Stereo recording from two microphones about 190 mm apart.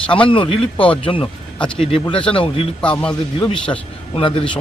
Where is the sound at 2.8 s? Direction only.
5° left (ahead or behind).